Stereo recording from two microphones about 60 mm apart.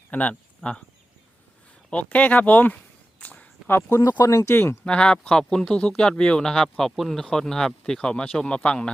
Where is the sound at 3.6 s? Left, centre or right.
Left.